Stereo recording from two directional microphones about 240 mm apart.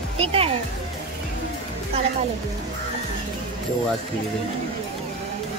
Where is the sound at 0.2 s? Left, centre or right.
Right.